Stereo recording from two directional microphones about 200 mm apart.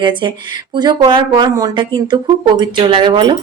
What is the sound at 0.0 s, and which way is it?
Speech, 25° right (ahead or behind).